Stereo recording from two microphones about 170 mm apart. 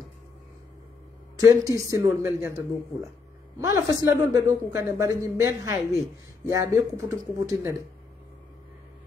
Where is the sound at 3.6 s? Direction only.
15° right (ahead or behind).